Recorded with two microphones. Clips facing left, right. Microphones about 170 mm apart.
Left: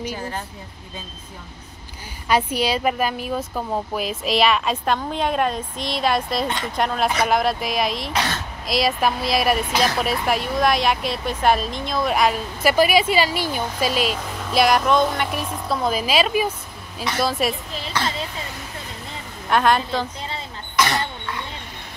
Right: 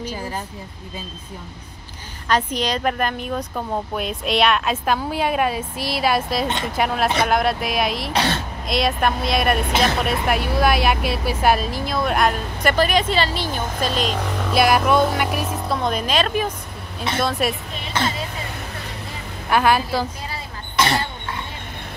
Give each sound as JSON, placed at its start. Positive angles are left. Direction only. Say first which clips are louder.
{"t": 2.2, "sound": "a woman's voice", "louder": "left 1 dB", "side_deg": 10}
{"t": 8.1, "sound": "speech", "louder": "right 3 dB", "side_deg": -30}
{"t": 8.6, "sound": "a woman's voice", "louder": "even", "side_deg": 0}
{"t": 9.7, "sound": "speech", "louder": "right 1 dB", "side_deg": -25}
{"t": 10.0, "sound": "a woman's voice", "louder": "right 1 dB", "side_deg": 0}
{"t": 17.9, "sound": "speech", "louder": "right 2 dB", "side_deg": -25}
{"t": 19.5, "sound": "a woman's voice", "louder": "right 1 dB", "side_deg": -5}
{"t": 20.7, "sound": "a sound", "louder": "right 1 dB", "side_deg": -30}